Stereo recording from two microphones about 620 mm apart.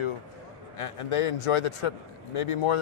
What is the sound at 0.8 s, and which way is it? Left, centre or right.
A man's voice, left.